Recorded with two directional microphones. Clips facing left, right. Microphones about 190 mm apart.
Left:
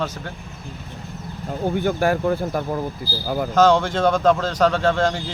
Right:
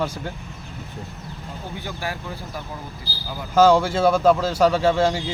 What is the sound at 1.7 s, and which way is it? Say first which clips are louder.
Speech: left 11 dB; 55° left (ahead or behind).